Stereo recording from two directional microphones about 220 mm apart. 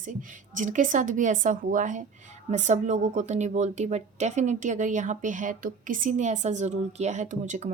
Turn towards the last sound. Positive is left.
turn(degrees=-35)  # may be behind; listen again after turning